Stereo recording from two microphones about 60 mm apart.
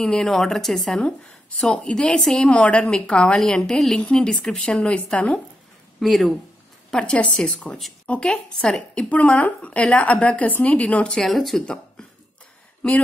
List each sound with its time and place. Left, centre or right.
0.0 s speech: centre
1.6 s a woman's voice: centre
5.9 s speech: centre
6.9 s a woman's voice: centre
9.1 s a woman's voice: left
11.2 s speech: centre
11.6 s a sound: centre